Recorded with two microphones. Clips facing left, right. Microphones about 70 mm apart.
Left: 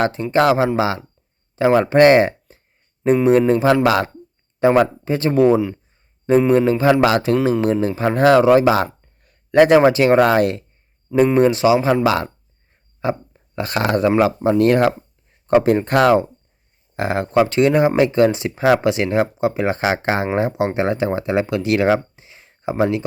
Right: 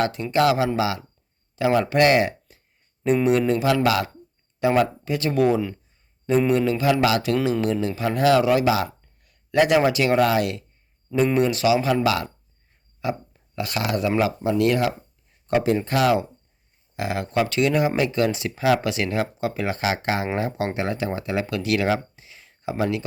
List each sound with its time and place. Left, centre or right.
0.0 s speech: left